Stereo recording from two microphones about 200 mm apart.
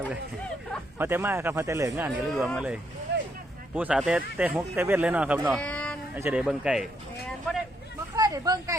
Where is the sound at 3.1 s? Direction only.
60° right (ahead or behind).